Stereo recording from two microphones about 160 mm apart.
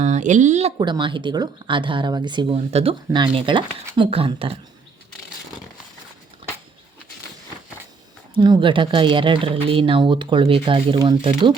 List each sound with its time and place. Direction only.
0.0 s speech: 50° right (ahead or behind)
0.8 s speech: 30° right (ahead or behind)
8.4 s speech: 30° right (ahead or behind)